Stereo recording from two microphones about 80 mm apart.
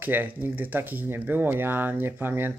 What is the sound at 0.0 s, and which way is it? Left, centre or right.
Speech, right.